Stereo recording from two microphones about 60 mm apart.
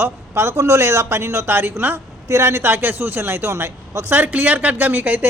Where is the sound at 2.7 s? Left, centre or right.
Right.